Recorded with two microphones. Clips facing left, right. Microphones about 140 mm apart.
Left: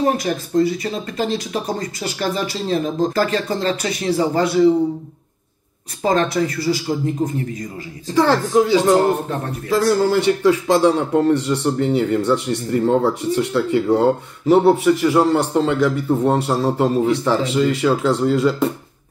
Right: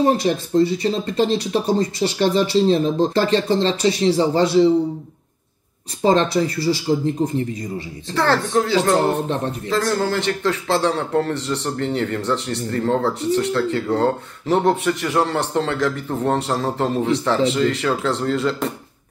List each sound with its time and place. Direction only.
0.0 s speech: 30° right (ahead or behind)
6.0 s speech: 30° right (ahead or behind)
8.1 s a man's voice: 15° left (ahead or behind)